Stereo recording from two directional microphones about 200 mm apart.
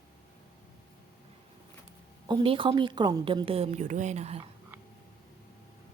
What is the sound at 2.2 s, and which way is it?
A woman's voice, 25° right (ahead or behind).